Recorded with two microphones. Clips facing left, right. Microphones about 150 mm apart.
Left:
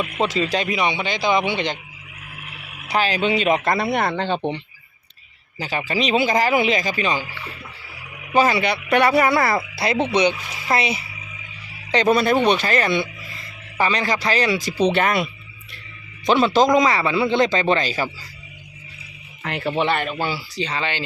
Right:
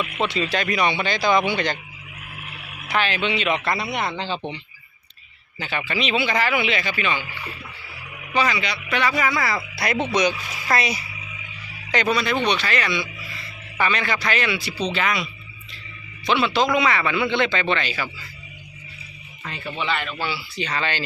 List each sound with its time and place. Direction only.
0.0 s a man's voice: 40° left (ahead or behind)
0.7 s speech: 20° left (ahead or behind)
2.8 s speech: 35° left (ahead or behind); by 4.4 s 55° left (ahead or behind)
5.5 s a man's voice: 40° left (ahead or behind)
8.3 s speech: 50° left (ahead or behind)
9.7 s speech: 25° left (ahead or behind)
12.0 s speech: 45° left (ahead or behind)
13.7 s a man's voice: 35° left (ahead or behind)
14.8 s speech: 55° left (ahead or behind)
16.2 s a man's voice: 40° left (ahead or behind)
19.4 s speech: 75° left (ahead or behind)
19.9 s speech: 50° left (ahead or behind)
20.7 s speech: 20° left (ahead or behind)